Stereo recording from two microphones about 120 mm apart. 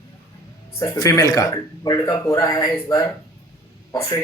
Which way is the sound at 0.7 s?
30° left (ahead or behind).